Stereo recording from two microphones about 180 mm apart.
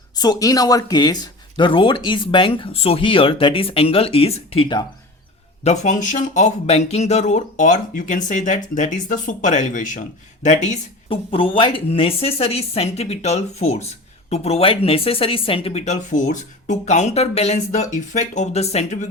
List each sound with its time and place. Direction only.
0.2 s speech: 20° left (ahead or behind); by 10.8 s 40° left (ahead or behind)
11.1 s speech: 30° left (ahead or behind)